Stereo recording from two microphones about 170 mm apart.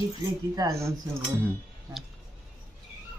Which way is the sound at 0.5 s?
20° right (ahead or behind).